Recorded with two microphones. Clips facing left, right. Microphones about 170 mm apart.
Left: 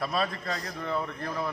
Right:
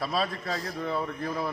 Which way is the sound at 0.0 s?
Centre (ahead or behind).